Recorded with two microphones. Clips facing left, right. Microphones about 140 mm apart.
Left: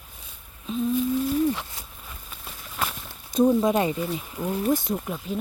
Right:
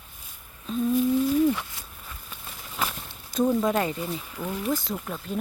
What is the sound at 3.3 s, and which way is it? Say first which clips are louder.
Speech: left 3 dB; 20° left (ahead or behind).